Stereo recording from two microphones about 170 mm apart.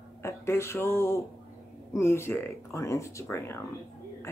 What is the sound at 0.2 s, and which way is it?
A woman's voice, 15° left (ahead or behind).